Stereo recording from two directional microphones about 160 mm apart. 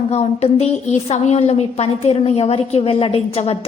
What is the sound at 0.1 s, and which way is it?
A woman's voice, 40° left (ahead or behind).